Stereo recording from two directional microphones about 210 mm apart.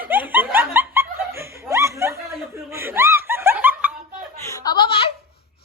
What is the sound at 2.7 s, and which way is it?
Snicker, 10° right (ahead or behind).